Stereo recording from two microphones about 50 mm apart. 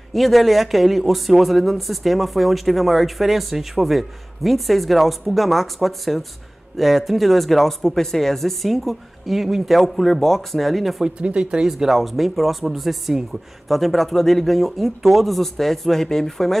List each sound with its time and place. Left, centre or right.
0.1 s speech: centre
11.1 s speech: right
11.8 s speech: centre